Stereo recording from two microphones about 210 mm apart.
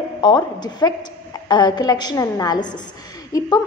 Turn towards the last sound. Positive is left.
turn(degrees=20)  # may be behind; listen again after turning